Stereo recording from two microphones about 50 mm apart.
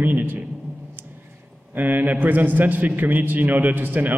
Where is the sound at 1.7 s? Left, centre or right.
Right.